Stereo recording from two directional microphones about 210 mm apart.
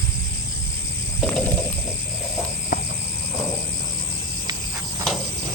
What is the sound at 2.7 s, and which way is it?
Cricket, 45° left (ahead or behind).